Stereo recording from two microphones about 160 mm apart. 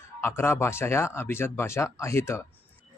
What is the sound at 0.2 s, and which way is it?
Speech, 15° left (ahead or behind).